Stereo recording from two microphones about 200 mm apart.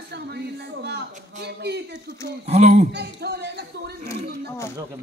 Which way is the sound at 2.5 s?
35° right (ahead or behind).